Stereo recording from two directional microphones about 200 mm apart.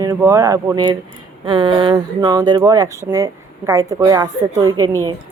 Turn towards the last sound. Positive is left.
turn(degrees=-20)  # may be behind; listen again after turning